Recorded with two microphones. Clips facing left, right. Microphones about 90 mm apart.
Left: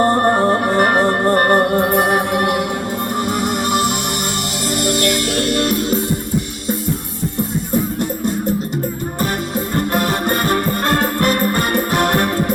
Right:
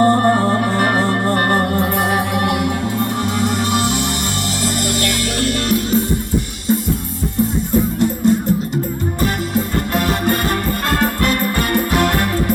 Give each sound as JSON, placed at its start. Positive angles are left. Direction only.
{"t": 0.0, "sound": "music", "side_deg": 35}
{"t": 2.3, "sound": "music", "side_deg": 50}
{"t": 5.4, "sound": "music", "side_deg": 40}
{"t": 9.9, "sound": "music", "side_deg": 45}